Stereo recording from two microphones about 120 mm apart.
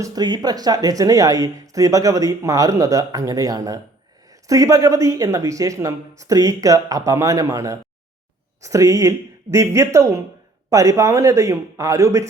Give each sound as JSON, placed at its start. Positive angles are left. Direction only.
{"t": 0.0, "sound": "speech", "side_deg": -35}